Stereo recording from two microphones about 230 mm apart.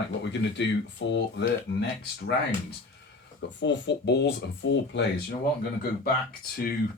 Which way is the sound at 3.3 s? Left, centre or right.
Left.